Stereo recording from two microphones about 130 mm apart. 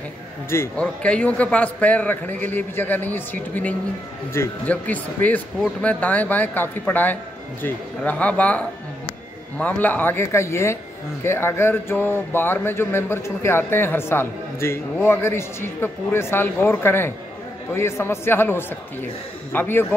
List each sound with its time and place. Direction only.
0.7 s a man's voice: 10° left (ahead or behind)